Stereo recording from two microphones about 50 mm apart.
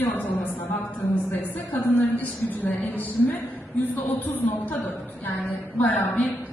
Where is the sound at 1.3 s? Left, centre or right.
Left.